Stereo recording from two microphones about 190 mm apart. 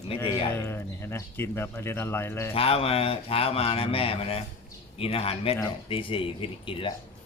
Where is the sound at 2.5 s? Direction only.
30° left (ahead or behind).